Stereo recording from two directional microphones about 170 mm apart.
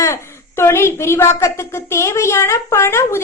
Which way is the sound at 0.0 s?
15° left (ahead or behind).